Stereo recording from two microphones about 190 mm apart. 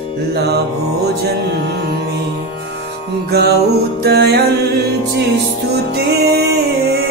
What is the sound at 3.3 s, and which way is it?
Music, 60° right (ahead or behind).